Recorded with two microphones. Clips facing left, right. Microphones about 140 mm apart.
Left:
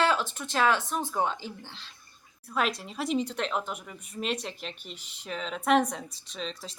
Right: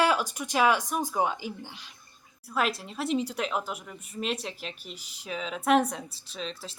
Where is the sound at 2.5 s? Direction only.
5° right (ahead or behind).